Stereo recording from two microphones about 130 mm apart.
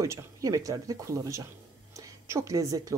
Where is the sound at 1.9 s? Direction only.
25° right (ahead or behind).